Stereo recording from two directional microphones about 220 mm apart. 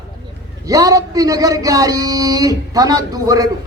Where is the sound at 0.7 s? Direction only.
15° right (ahead or behind).